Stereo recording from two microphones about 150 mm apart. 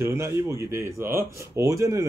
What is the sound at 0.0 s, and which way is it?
Speech, 20° right (ahead or behind).